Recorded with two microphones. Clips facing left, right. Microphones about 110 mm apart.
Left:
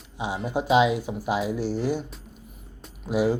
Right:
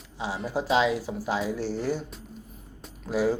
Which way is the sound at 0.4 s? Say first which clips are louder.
Left 3 dB; 15° left (ahead or behind).